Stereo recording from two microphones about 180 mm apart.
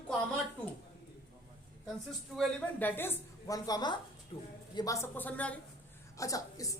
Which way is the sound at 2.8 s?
10° left (ahead or behind).